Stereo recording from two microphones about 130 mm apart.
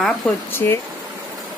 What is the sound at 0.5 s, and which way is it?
Speech, 15° left (ahead or behind).